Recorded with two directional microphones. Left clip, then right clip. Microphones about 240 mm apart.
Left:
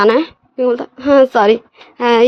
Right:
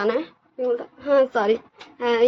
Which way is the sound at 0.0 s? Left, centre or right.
Left.